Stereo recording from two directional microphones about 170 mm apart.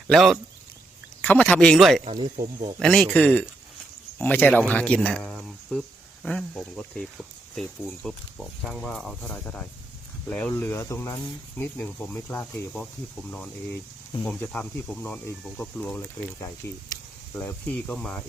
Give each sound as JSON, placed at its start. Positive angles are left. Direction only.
{"t": 0.1, "sound": "speech", "side_deg": 0}
{"t": 2.0, "sound": "speech", "side_deg": -30}
{"t": 2.7, "sound": "speech", "side_deg": 5}